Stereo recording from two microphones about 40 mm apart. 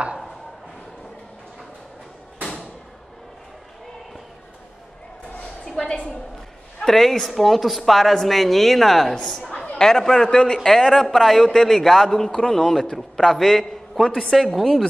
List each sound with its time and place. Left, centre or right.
5.8 s a man's voice: centre
6.9 s a woman's voice: centre
14.3 s a woman's voice: centre